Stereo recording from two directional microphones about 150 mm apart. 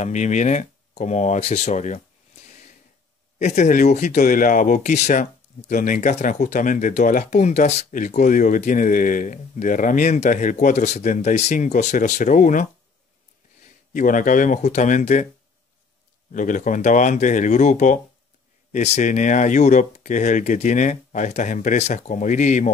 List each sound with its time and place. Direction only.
0.0 s speech: 55° left (ahead or behind)
3.4 s speech: 55° left (ahead or behind)
13.9 s speech: 60° left (ahead or behind)
16.3 s speech: 60° left (ahead or behind)